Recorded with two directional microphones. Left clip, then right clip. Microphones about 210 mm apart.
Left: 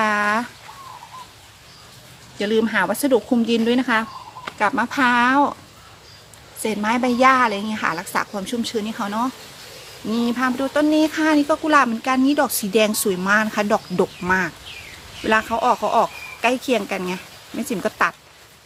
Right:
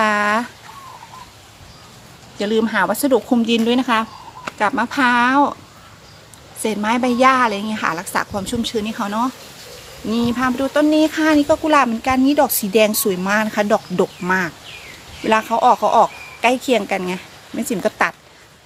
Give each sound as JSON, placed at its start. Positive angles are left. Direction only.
{"t": 0.0, "sound": "a sound", "side_deg": -10}
{"t": 2.4, "sound": "a woman's voice", "side_deg": -5}
{"t": 6.6, "sound": "a woman's voice", "side_deg": -10}